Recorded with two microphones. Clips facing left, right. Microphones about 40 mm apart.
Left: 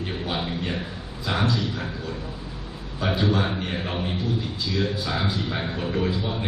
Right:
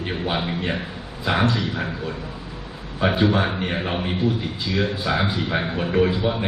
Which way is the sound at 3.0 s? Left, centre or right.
Right.